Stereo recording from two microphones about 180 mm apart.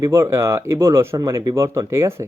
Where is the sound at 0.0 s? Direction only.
15° right (ahead or behind).